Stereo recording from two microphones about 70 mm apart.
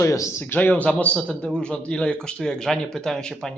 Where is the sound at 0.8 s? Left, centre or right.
Centre.